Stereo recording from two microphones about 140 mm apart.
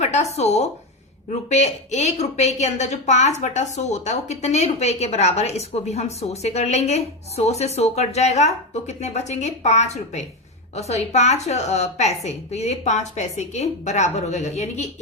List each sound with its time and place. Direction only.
0.0 s a woman's voice: 55° left (ahead or behind)